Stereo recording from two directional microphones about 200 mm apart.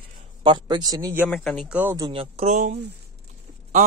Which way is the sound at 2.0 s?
30° right (ahead or behind).